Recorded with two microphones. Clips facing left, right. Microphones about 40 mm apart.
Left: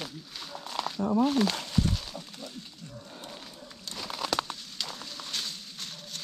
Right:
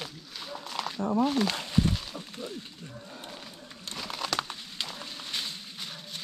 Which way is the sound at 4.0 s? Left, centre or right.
Centre.